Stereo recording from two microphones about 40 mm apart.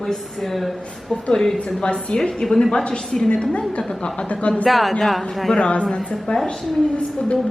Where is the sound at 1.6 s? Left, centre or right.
Left.